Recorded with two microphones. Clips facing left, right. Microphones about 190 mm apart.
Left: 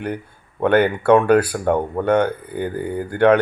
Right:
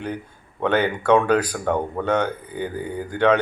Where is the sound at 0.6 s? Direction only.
10° left (ahead or behind).